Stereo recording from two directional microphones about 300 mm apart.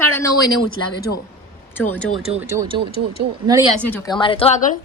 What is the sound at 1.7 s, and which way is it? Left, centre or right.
Speech, centre.